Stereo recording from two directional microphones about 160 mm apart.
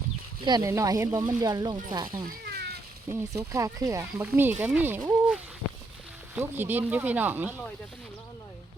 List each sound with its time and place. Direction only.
0.4 s speech: 25° right (ahead or behind)
2.4 s cat: 80° right
3.1 s speech: 20° right (ahead or behind)